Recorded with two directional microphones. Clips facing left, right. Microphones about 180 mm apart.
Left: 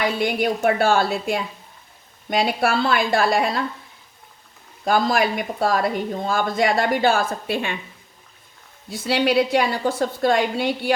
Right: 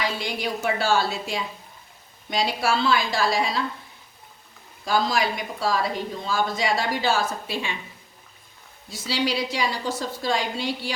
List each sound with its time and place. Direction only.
0.0 s speech: 55° left (ahead or behind)
4.9 s speech: 55° left (ahead or behind)
8.9 s speech: 60° left (ahead or behind)